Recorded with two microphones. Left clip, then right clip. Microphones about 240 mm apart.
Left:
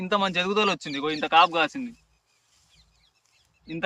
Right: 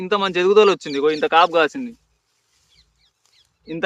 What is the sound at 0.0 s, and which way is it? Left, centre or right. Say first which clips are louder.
A man's voice: right 6 dB; centre.